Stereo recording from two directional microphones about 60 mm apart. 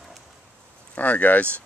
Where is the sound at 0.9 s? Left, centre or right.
Left.